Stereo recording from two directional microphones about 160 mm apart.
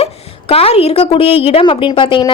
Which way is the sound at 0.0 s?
40° left (ahead or behind).